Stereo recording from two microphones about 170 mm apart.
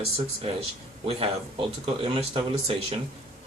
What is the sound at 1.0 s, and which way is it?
Speech, 35° right (ahead or behind).